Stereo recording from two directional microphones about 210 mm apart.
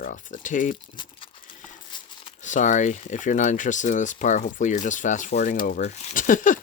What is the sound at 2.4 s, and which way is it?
Speech, 35° left (ahead or behind).